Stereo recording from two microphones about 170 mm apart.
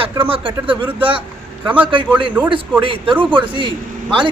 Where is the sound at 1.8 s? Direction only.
30° right (ahead or behind).